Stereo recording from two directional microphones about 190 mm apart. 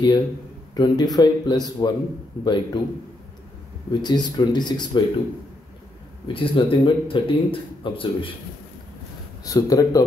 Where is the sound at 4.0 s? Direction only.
25° left (ahead or behind).